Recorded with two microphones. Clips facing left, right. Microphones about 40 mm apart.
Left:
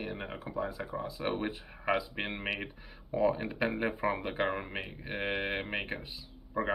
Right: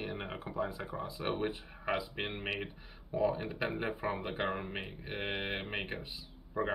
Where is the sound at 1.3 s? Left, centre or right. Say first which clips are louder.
Even; centre.